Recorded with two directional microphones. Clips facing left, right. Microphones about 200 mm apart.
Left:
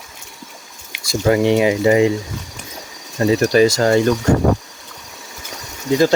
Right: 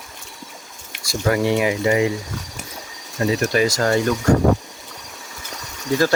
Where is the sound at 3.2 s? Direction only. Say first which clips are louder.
Left 6 dB; 30° left (ahead or behind).